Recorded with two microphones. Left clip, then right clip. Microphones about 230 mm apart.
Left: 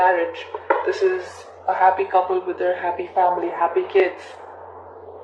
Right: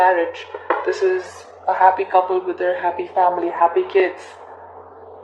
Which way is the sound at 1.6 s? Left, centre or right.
Right.